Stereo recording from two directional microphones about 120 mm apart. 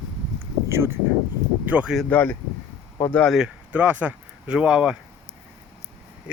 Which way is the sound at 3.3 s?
10° right (ahead or behind).